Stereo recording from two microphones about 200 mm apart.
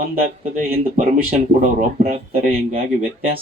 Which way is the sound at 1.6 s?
40° right (ahead or behind).